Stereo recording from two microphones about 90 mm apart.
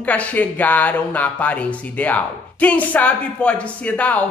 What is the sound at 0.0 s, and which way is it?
Speech, 15° left (ahead or behind).